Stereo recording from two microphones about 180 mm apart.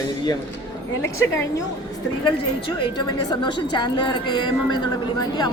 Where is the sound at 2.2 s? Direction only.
25° left (ahead or behind).